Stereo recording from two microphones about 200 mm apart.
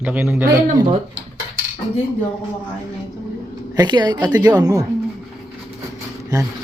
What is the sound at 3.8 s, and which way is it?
A woman's voice, 20° right (ahead or behind).